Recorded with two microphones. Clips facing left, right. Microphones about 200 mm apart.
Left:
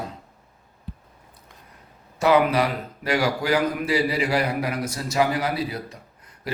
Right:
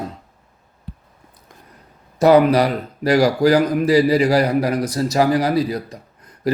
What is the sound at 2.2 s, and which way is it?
A man's voice, 40° right (ahead or behind).